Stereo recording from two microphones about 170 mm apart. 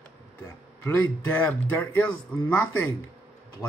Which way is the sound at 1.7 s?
10° left (ahead or behind).